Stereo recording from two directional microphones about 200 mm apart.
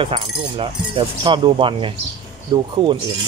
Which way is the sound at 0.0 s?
25° right (ahead or behind).